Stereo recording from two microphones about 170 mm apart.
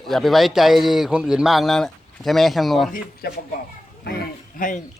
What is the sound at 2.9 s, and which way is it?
Speech, 65° left (ahead or behind).